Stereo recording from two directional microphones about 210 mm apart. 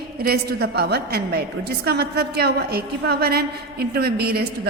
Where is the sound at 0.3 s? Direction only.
50° right (ahead or behind).